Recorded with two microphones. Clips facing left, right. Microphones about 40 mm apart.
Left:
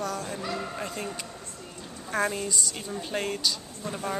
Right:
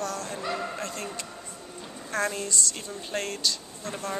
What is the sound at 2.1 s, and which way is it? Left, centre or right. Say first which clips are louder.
Speech: left 1 dB; centre.